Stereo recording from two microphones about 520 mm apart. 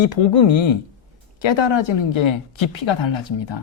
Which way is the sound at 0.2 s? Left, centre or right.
Left.